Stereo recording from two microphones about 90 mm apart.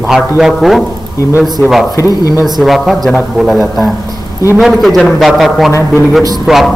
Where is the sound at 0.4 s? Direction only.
Centre (ahead or behind).